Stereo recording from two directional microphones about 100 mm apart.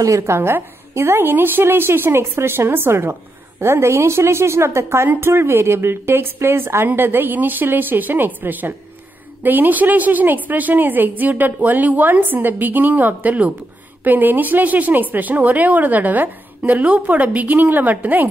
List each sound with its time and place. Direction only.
0.0 s a woman's voice: 30° right (ahead or behind)